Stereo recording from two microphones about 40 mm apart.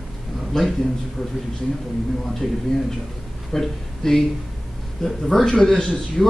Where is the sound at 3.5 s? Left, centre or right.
Centre.